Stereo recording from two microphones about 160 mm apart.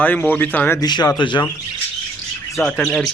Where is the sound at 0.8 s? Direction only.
25° left (ahead or behind).